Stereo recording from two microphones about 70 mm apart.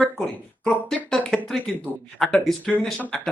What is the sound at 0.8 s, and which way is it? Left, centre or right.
Speech, centre.